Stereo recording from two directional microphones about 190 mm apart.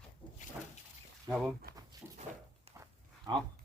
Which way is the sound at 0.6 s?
Centre (ahead or behind).